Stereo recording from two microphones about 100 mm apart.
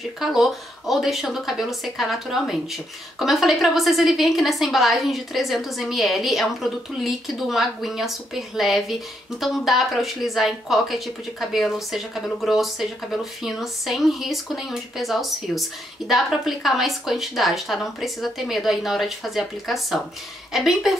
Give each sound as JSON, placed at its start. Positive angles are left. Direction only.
{"t": 0.2, "sound": "speech", "side_deg": -5}